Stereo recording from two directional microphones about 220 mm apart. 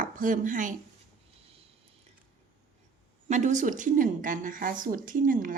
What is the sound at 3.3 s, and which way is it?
Speech, 35° right (ahead or behind).